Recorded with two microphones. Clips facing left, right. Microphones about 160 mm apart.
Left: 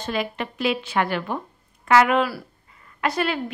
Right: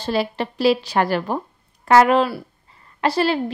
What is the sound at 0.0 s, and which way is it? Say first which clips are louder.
A woman's voice: right 5 dB; 35° right (ahead or behind).